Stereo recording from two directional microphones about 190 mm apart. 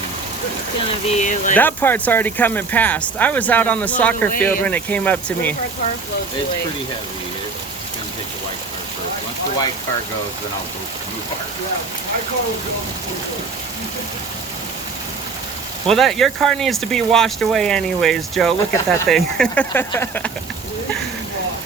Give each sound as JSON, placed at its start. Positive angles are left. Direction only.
{"t": 1.0, "sound": "speech", "side_deg": 40}
{"t": 1.5, "sound": "speech", "side_deg": 10}
{"t": 15.9, "sound": "speech", "side_deg": 0}